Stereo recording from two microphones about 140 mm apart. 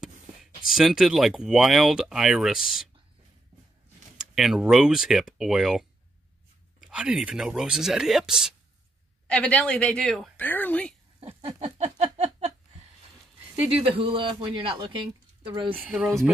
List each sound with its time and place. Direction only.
0.7 s speech: 5° right (ahead or behind)
4.4 s speech: 5° right (ahead or behind)
9.3 s a man's voice: 5° left (ahead or behind)
10.3 s a man's voice: 15° left (ahead or behind)
11.1 s a sound: 45° right (ahead or behind)
13.9 s speech: 40° right (ahead or behind)
15.8 s speech: 5° right (ahead or behind)